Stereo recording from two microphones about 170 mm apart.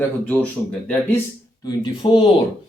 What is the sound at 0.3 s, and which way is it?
Speech, 10° left (ahead or behind).